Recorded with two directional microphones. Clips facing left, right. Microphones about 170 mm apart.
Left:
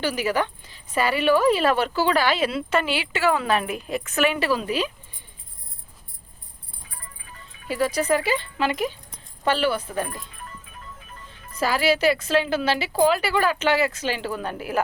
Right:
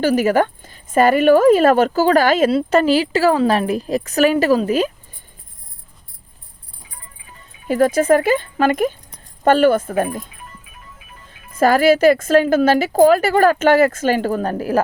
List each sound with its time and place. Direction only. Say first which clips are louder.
0.0 s a woman's voice: right 9 dB; 45° right (ahead or behind)
7.7 s a woman's voice: right 8 dB; 50° right (ahead or behind)
11.5 s a woman's voice: right 9 dB; 50° right (ahead or behind)